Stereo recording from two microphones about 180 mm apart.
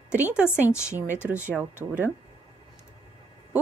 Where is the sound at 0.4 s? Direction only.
5° right (ahead or behind).